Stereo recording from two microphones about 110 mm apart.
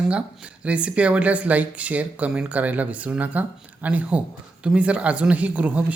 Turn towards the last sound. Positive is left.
turn(degrees=-15)  # may be behind; listen again after turning